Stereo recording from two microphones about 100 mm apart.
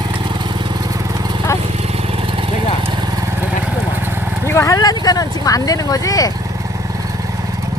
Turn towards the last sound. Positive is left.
turn(degrees=35)  # may be behind; listen again after turning